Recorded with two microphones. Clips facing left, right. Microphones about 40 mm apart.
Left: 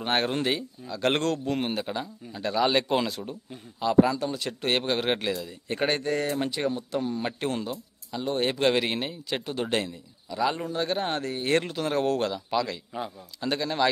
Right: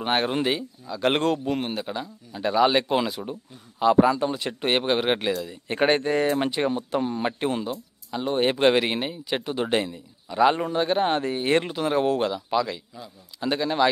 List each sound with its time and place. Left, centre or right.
0.0 s speech: centre
1.6 s a man's voice: centre
2.4 s speech: centre
3.8 s speech: right
5.7 s speech: right
8.7 s speech: centre
10.3 s a man's voice: right
10.8 s speech: right